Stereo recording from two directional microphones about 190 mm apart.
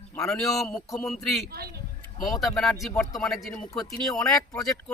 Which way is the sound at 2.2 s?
Centre (ahead or behind).